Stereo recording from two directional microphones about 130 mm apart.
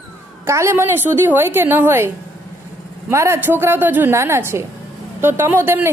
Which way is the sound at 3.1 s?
20° right (ahead or behind).